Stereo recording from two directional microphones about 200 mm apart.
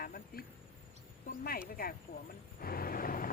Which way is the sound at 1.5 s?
45° left (ahead or behind).